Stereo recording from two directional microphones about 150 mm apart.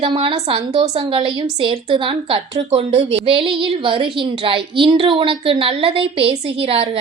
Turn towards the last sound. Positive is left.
turn(degrees=-40)  # may be behind; listen again after turning